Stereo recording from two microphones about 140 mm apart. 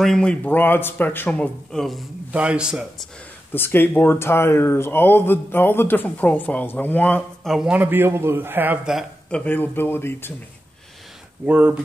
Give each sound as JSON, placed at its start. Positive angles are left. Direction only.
{"t": 0.0, "sound": "speech", "side_deg": 5}
{"t": 3.5, "sound": "speech", "side_deg": 15}
{"t": 7.4, "sound": "a man's voice", "side_deg": -5}
{"t": 9.3, "sound": "speech", "side_deg": 10}
{"t": 11.4, "sound": "a man's voice", "side_deg": -10}